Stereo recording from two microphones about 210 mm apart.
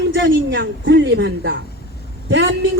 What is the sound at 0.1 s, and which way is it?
Speech, 60° right (ahead or behind).